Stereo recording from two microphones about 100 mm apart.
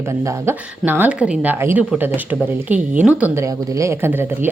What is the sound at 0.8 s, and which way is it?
A woman's voice, 20° right (ahead or behind).